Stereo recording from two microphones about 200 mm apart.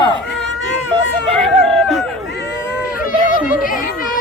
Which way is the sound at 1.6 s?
Centre (ahead or behind).